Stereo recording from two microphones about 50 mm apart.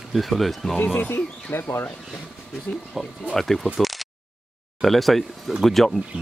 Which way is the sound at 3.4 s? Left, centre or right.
Centre.